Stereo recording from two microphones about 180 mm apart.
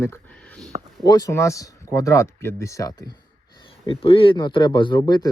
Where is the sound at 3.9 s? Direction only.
30° left (ahead or behind).